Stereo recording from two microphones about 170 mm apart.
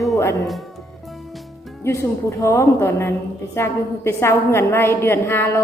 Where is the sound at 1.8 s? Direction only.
15° left (ahead or behind).